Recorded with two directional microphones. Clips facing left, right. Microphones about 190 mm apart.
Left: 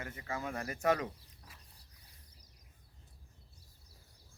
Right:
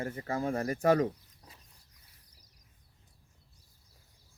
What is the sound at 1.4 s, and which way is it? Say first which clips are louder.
Bird: right 3 dB; 20° right (ahead or behind).